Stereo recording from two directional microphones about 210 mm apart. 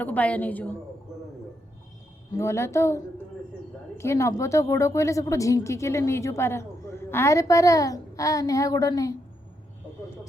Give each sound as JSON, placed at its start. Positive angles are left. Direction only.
{"t": 0.0, "sound": "speech", "side_deg": 5}
{"t": 2.3, "sound": "speech", "side_deg": 15}